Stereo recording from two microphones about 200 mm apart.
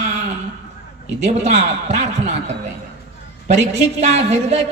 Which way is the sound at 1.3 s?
35° right (ahead or behind).